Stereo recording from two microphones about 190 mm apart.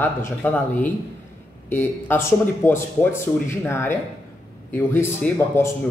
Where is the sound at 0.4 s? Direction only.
10° left (ahead or behind).